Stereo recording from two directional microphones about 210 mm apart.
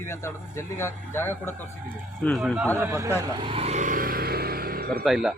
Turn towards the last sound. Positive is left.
turn(degrees=0)  # may be behind; listen again after turning